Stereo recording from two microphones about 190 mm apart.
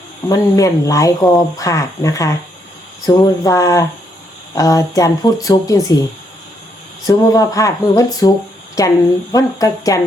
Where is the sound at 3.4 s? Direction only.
15° left (ahead or behind).